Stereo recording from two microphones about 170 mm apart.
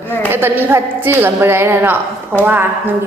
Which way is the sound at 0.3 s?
15° right (ahead or behind).